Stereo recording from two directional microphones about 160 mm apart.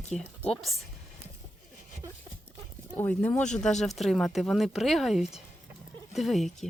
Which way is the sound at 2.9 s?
10° left (ahead or behind).